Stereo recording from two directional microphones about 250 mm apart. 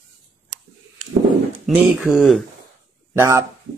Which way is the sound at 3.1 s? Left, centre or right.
Centre.